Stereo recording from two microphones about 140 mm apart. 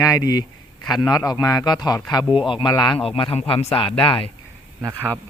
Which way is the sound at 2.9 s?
40° left (ahead or behind).